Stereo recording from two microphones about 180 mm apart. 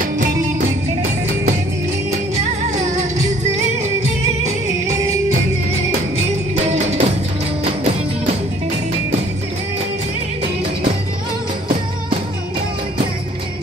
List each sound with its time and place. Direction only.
0.0 s music: 45° right (ahead or behind)
2.3 s music: 40° right (ahead or behind)
6.6 s music: 35° right (ahead or behind)